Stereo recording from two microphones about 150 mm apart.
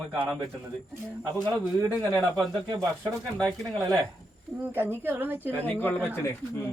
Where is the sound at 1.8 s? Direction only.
15° right (ahead or behind).